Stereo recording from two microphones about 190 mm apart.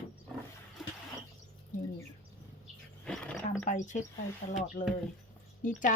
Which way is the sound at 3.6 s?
40° left (ahead or behind).